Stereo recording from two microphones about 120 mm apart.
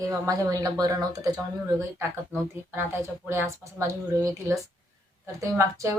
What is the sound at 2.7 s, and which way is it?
Speech, 20° right (ahead or behind).